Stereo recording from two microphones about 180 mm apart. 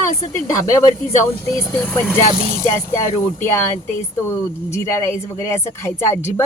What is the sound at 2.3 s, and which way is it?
Speech, 35° right (ahead or behind).